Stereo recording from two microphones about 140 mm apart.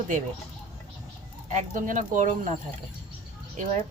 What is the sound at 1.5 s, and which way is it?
Speech, 70° right (ahead or behind).